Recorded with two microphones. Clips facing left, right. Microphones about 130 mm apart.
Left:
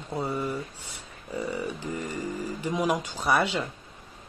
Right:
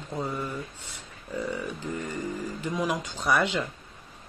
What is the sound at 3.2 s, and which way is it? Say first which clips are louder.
Speech: even; centre (ahead or behind).